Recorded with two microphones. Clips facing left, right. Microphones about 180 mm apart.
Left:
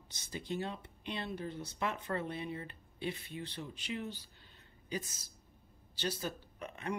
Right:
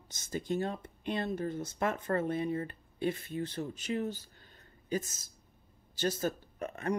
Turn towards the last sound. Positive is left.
turn(degrees=-45)  # may be behind; listen again after turning